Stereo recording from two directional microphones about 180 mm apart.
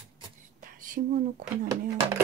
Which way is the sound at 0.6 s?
45° right (ahead or behind).